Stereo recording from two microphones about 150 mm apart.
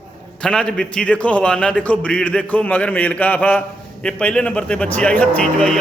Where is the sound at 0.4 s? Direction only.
5° left (ahead or behind).